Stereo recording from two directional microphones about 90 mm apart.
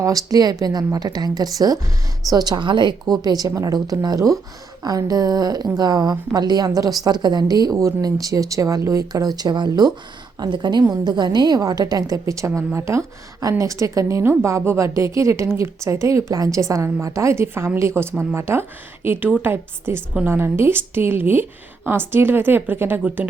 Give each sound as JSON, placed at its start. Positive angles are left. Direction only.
{"t": 0.0, "sound": "a woman's voice", "side_deg": -40}